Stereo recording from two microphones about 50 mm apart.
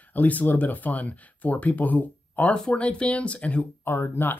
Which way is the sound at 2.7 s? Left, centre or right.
Left.